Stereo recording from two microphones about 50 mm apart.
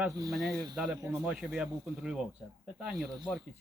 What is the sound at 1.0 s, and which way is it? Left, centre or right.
Speech, right.